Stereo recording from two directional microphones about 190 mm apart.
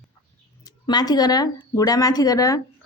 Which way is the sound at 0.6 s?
20° left (ahead or behind).